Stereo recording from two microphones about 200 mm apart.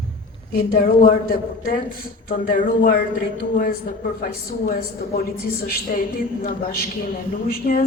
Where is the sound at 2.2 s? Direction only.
45° left (ahead or behind).